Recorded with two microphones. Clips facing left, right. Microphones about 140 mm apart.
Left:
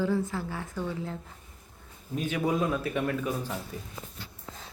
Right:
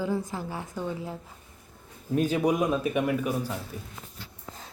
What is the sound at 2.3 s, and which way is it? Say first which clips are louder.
A woman's voice: even; 15° right (ahead or behind).